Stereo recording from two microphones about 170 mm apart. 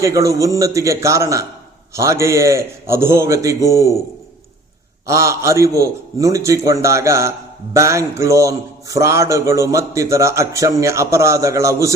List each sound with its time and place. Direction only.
0.0 s a man's voice: 20° right (ahead or behind)
5.0 s a man's voice: 15° right (ahead or behind)